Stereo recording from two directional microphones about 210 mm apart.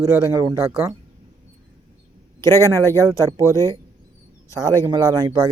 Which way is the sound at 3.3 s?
15° right (ahead or behind).